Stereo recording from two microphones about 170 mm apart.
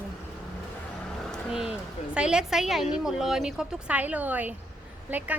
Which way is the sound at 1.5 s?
5° right (ahead or behind).